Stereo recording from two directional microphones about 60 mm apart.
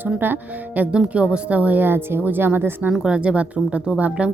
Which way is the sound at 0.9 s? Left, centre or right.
Centre.